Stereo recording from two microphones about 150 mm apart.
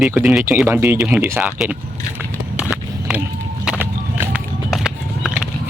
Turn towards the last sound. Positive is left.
turn(degrees=-5)  # may be behind; listen again after turning